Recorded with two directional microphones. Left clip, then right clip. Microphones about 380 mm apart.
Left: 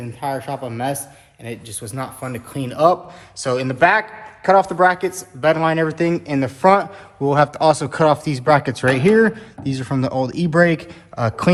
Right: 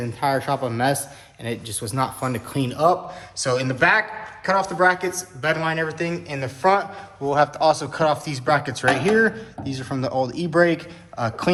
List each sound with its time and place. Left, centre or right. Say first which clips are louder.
0.0 s speech: right 2 dB; centre